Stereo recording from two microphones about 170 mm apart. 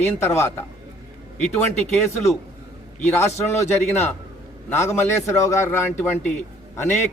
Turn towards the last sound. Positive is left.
turn(degrees=15)  # may be behind; listen again after turning